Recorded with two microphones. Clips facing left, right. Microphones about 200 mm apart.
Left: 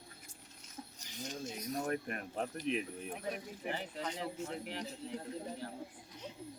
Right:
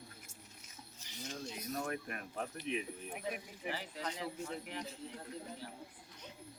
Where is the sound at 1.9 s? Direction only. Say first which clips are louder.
Left 4 dB; 35° left (ahead or behind).